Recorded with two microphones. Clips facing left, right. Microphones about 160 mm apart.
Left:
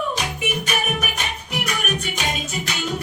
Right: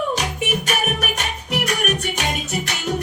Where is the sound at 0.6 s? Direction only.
75° right (ahead or behind).